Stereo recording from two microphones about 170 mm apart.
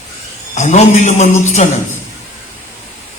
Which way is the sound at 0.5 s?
40° left (ahead or behind).